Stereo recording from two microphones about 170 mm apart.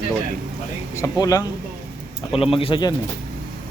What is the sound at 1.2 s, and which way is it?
Speech, 20° left (ahead or behind).